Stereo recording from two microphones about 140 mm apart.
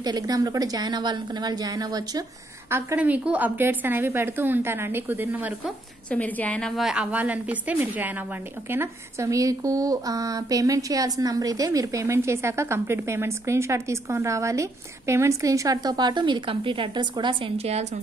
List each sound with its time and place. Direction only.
0.0 s speech: 30° right (ahead or behind)
2.7 s a woman's voice: 15° right (ahead or behind)
6.0 s a woman's voice: 10° left (ahead or behind); by 17.4 s 35° right (ahead or behind)
17.6 s a woman's voice: 50° right (ahead or behind)